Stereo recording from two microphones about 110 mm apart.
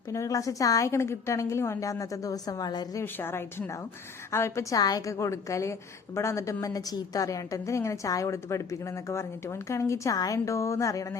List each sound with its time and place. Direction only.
0.1 s a woman's voice: 30° left (ahead or behind)
3.0 s a woman's voice: 20° left (ahead or behind)
4.8 s a woman's voice: 35° left (ahead or behind)